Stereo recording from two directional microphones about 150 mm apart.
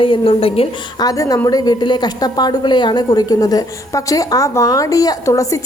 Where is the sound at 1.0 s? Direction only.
25° left (ahead or behind).